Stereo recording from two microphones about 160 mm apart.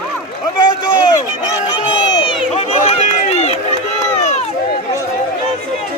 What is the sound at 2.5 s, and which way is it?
Run, 40° left (ahead or behind).